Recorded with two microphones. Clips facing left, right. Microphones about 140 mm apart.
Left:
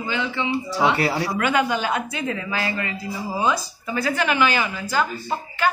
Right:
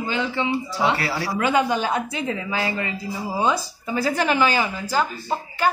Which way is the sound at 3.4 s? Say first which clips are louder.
Even; 35° right (ahead or behind).